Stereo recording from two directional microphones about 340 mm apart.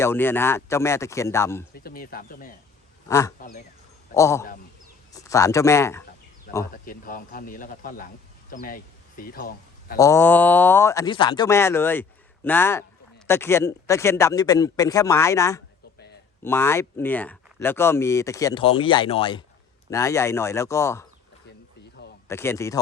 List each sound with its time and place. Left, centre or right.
0.0 s speech: centre
1.7 s speech: left
3.1 s speech: centre
6.5 s a man's voice: left
10.0 s speech: centre
22.3 s speech: centre